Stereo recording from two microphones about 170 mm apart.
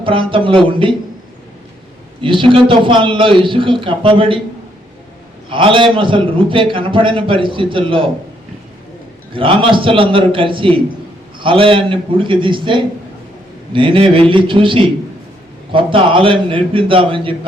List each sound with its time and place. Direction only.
0.0 s a man's voice: 30° right (ahead or behind)
2.2 s a man's voice: 30° right (ahead or behind)
5.5 s a man's voice: 30° right (ahead or behind)
9.3 s a man's voice: 30° right (ahead or behind)